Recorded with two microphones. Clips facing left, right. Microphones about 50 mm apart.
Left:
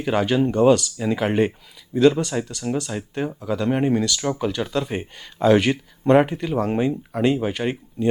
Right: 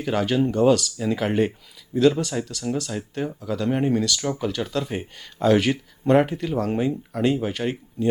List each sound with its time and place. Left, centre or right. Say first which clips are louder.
0.0 s speech: left 2 dB; centre
6.7 s speech: left 2 dB; centre